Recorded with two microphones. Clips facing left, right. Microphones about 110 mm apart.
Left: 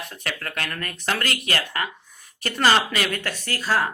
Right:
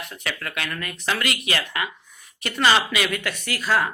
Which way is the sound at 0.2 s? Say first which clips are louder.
Even; 40° left (ahead or behind).